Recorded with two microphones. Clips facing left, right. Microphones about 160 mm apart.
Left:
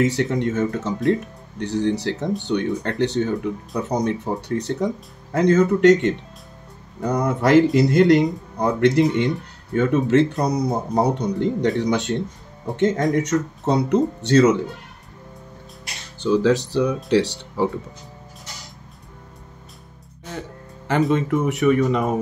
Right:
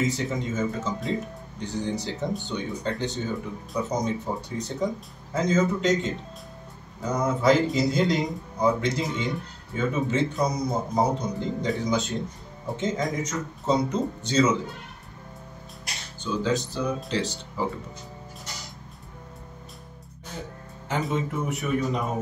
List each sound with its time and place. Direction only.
0.0 s speech: 70° left (ahead or behind)
16.2 s speech: 70° left (ahead or behind)
21.1 s speech: 75° left (ahead or behind)